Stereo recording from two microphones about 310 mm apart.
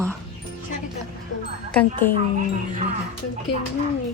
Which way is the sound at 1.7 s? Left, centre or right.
Centre.